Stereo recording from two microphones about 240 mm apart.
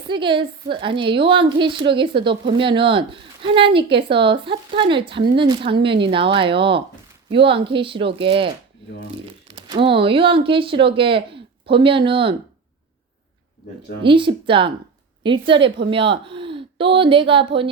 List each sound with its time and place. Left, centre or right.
0.1 s a woman's voice: right
14.0 s a woman's voice: right